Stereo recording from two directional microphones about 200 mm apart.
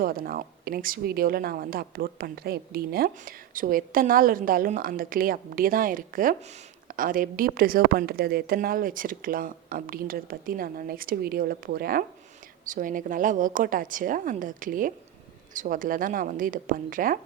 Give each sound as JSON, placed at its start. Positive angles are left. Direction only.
{"t": 0.0, "sound": "a woman's voice", "side_deg": -45}